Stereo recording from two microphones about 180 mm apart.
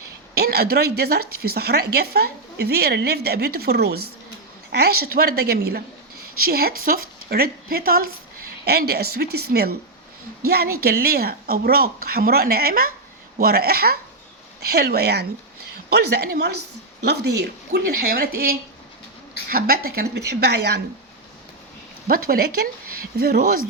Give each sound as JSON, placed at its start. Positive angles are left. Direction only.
{"t": 0.3, "sound": "speech", "side_deg": -60}
{"t": 20.1, "sound": "a woman's voice", "side_deg": -70}
{"t": 22.0, "sound": "speech", "side_deg": -55}